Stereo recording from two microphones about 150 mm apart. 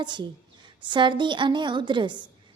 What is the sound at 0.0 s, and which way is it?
A woman's voice, 30° right (ahead or behind).